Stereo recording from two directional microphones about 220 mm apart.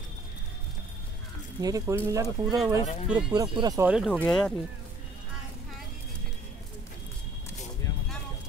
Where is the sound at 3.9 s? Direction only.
Centre (ahead or behind).